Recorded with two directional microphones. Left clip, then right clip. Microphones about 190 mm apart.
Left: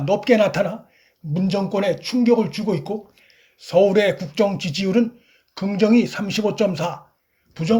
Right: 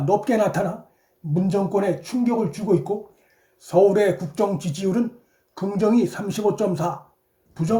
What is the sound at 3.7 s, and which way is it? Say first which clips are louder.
Speech: left 1 dB; 25° left (ahead or behind).